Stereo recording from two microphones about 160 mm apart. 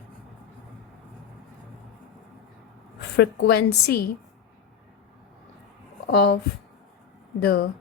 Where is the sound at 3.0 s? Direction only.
90° left.